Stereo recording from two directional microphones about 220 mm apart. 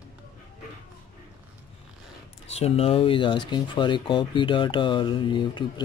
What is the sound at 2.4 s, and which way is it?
Speech, 30° left (ahead or behind).